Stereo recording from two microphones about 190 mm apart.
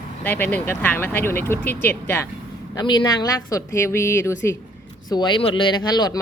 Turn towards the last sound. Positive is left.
turn(degrees=20)  # may be behind; listen again after turning